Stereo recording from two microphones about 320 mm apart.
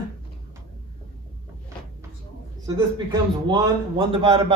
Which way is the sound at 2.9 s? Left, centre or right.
Centre.